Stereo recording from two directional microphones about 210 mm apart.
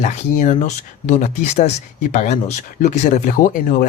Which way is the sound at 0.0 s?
35° left (ahead or behind).